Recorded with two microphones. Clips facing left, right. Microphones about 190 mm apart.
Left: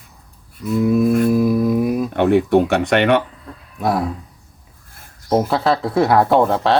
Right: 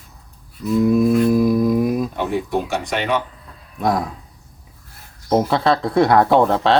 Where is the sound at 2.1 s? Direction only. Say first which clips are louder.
Left 8 dB; 65° left (ahead or behind).